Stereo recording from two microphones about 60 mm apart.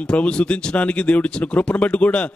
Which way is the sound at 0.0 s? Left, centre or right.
Centre.